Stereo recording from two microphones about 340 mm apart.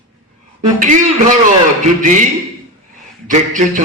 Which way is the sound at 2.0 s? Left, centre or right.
Right.